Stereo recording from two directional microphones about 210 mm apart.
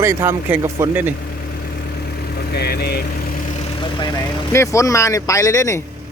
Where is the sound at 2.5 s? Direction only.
50° left (ahead or behind).